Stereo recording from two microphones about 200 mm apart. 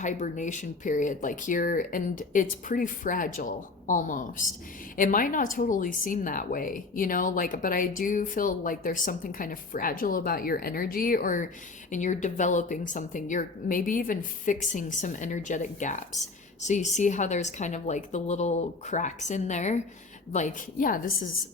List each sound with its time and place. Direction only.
0.0 s a woman's voice: 35° left (ahead or behind)